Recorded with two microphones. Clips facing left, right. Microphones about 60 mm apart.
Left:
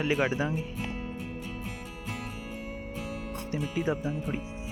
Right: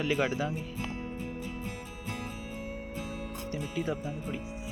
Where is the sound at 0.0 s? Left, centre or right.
Left.